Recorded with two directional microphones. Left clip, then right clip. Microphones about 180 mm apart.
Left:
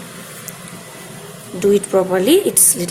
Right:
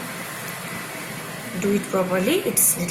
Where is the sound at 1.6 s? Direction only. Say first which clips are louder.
Left 9 dB; 35° left (ahead or behind).